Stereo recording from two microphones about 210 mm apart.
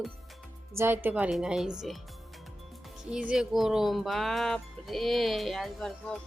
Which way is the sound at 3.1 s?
5° right (ahead or behind).